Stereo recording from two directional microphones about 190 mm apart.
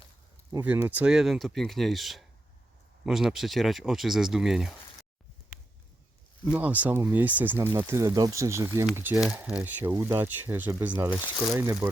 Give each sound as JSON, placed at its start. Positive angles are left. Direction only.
{"t": 0.5, "sound": "speech", "side_deg": -10}
{"t": 6.4, "sound": "speech", "side_deg": -10}